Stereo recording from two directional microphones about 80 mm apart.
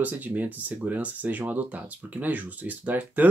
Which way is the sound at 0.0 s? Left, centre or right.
Centre.